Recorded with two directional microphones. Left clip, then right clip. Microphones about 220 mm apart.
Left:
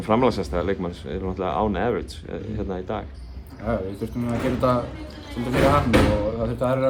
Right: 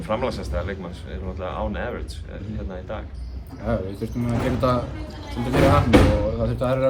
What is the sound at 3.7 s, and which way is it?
Speech, 10° left (ahead or behind).